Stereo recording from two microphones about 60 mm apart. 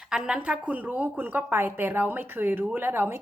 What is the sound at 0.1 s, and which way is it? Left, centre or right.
Speech, centre.